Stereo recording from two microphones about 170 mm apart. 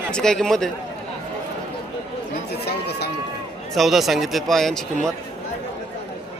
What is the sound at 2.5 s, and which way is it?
Speech, 75° left (ahead or behind).